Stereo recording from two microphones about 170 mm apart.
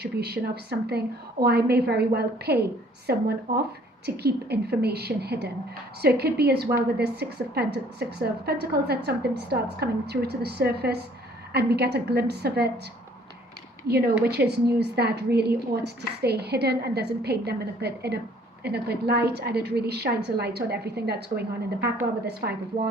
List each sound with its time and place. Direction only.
0.0 s a woman's voice: 70° right (ahead or behind)
14.3 s a woman's voice: 75° right (ahead or behind)